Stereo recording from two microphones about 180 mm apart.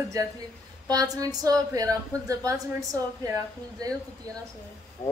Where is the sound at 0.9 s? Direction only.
20° right (ahead or behind).